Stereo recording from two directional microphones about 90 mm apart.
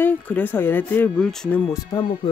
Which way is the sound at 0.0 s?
20° left (ahead or behind).